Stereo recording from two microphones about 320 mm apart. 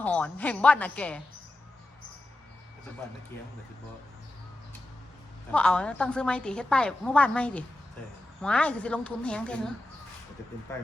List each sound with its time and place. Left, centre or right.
0.0 s a woman's voice: centre
5.5 s a woman's voice: centre